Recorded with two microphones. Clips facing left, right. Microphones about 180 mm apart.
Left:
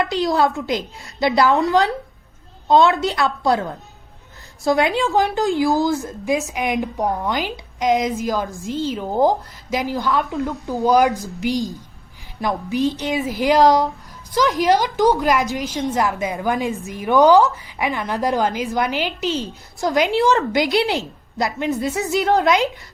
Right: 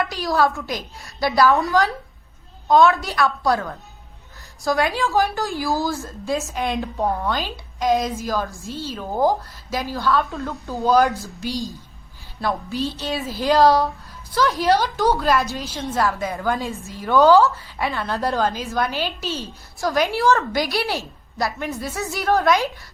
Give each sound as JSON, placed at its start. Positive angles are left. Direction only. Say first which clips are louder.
{"t": 0.0, "sound": "a woman's voice", "louder": "left 2 dB", "side_deg": 20}